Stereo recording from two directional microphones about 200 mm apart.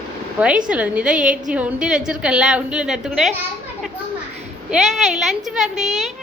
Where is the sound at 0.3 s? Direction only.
5° right (ahead or behind).